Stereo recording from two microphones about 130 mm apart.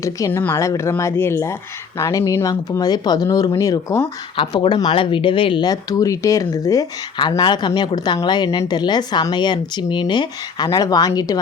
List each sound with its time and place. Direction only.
0.0 s speech: 20° left (ahead or behind)
4.4 s speech: 40° left (ahead or behind)